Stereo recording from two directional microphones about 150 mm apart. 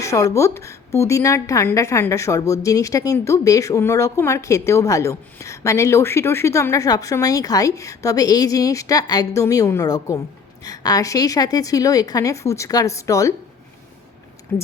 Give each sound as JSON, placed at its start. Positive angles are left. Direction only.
{"t": 0.0, "sound": "a woman's voice", "side_deg": 20}
{"t": 14.5, "sound": "speech", "side_deg": 10}